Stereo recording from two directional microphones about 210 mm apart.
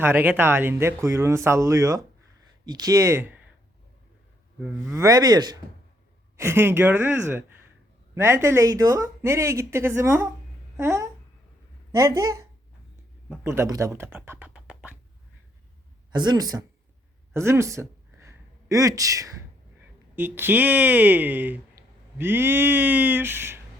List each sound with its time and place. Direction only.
0.0 s speech: 10° right (ahead or behind)
4.9 s a woman's voice: 15° right (ahead or behind)
13.2 s speech: 5° right (ahead or behind)
13.5 s speech: 15° right (ahead or behind)
16.1 s speech: 20° right (ahead or behind)
17.3 s a sound: 15° right (ahead or behind)
20.1 s speech: 10° right (ahead or behind)